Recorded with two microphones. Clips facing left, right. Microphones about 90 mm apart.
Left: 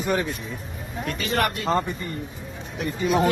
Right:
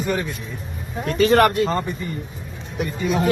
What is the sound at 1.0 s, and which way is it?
Speech, 40° right (ahead or behind).